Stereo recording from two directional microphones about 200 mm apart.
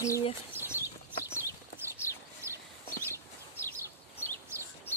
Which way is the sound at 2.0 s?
15° left (ahead or behind).